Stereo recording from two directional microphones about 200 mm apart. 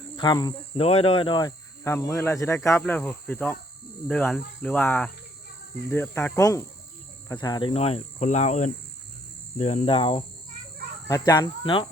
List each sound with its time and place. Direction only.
0.2 s speech: 20° left (ahead or behind)
7.3 s cricket: 20° left (ahead or behind); by 8.7 s 35° left (ahead or behind)
9.6 s speech: 35° left (ahead or behind)